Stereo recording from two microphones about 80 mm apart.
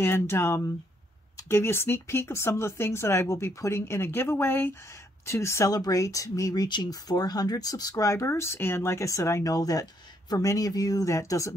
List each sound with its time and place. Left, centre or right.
0.0 s speech: left
5.7 s speech: left